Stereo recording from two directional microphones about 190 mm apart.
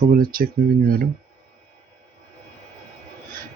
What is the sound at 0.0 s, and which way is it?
Speech, 50° right (ahead or behind).